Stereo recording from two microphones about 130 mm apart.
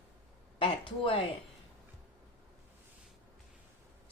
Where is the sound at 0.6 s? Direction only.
40° left (ahead or behind).